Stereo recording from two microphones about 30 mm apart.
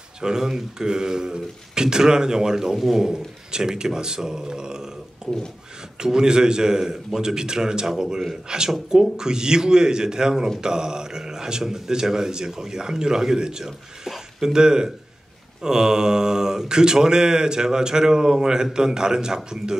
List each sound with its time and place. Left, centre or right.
0.2 s speech: centre
2.7 s speech: centre
3.5 s speech: right
8.7 s speech: centre
9.1 s speech: right